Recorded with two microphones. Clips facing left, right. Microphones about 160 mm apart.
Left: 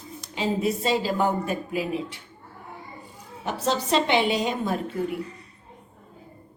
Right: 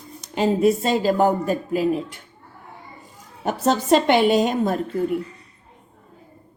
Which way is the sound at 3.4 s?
50° right (ahead or behind).